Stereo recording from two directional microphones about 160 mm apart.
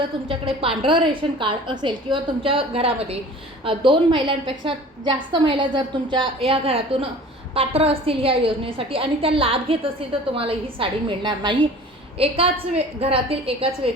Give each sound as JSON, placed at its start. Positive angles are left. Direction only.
{"t": 0.3, "sound": "a woman's voice", "side_deg": -35}